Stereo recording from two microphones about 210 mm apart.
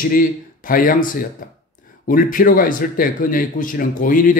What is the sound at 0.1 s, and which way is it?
A man's voice, 40° left (ahead or behind).